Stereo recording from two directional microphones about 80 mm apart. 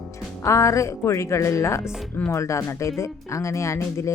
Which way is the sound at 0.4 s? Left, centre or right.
Left.